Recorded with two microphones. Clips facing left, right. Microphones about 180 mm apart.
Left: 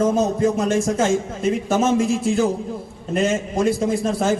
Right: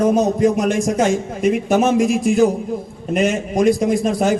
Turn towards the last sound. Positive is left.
turn(degrees=-15)  # may be behind; listen again after turning